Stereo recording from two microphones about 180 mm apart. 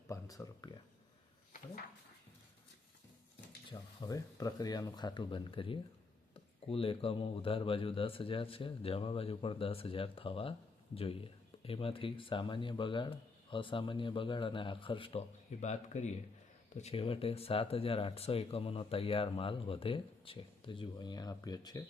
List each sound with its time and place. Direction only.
0.1 s a sound: 20° left (ahead or behind)
3.7 s speech: 20° left (ahead or behind)
15.6 s speech: 40° left (ahead or behind); by 21.8 s 20° left (ahead or behind)